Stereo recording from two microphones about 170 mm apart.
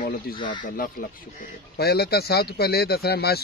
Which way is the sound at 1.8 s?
70° left (ahead or behind).